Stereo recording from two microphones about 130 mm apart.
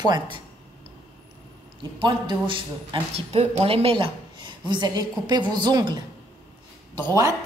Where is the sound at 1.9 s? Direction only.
40° right (ahead or behind).